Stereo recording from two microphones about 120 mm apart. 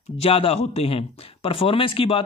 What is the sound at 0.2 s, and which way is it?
Speech, 55° left (ahead or behind).